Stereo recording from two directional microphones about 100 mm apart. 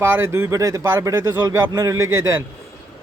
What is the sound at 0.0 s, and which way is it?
Speech, 25° right (ahead or behind).